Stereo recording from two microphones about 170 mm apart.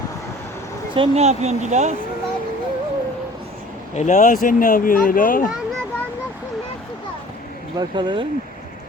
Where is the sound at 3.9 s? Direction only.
45° left (ahead or behind).